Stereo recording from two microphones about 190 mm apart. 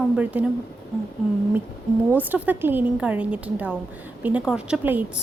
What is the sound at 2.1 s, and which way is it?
A woman's voice, 10° right (ahead or behind).